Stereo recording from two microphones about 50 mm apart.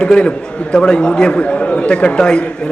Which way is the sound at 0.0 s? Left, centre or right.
Centre.